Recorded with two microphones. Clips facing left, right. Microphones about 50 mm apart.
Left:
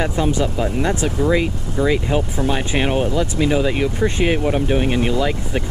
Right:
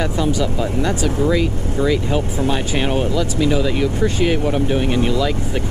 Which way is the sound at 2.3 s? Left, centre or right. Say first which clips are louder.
Even; left.